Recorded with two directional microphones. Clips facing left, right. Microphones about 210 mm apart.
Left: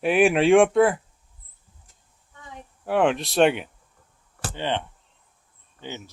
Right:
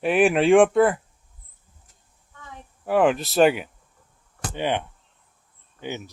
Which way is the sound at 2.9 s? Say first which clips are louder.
Right 2 dB; centre (ahead or behind).